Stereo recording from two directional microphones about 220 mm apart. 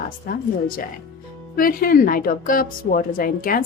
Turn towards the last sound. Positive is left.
turn(degrees=40)  # may be behind; listen again after turning